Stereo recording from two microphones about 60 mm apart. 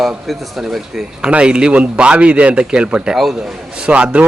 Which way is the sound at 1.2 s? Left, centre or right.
Centre.